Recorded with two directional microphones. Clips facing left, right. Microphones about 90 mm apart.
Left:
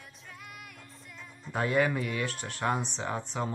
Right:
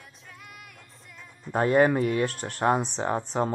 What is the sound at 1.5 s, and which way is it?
Speech, 40° right (ahead or behind).